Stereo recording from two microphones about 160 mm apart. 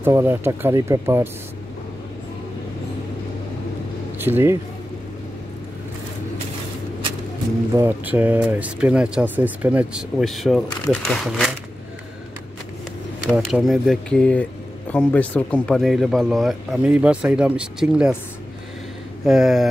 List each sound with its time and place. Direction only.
0.0 s speech: 15° right (ahead or behind)
4.2 s speech: 15° right (ahead or behind)
7.7 s speech: 15° right (ahead or behind)
13.3 s speech: centre (ahead or behind)
19.2 s speech: centre (ahead or behind)